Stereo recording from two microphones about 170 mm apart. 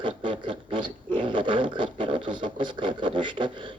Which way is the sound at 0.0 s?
30° right (ahead or behind).